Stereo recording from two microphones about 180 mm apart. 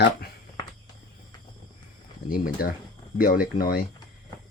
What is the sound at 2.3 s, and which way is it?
Speech, 55° left (ahead or behind).